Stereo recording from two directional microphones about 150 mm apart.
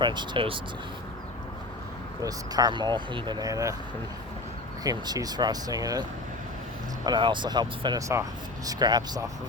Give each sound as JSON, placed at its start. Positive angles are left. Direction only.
{"t": 0.0, "sound": "speech", "side_deg": -30}
{"t": 2.2, "sound": "speech", "side_deg": -25}
{"t": 4.8, "sound": "speech", "side_deg": -25}